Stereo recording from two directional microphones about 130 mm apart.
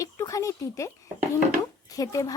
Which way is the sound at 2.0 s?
30° left (ahead or behind).